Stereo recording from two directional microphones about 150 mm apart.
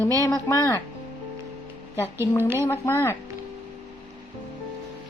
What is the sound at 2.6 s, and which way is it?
Speech, 15° left (ahead or behind).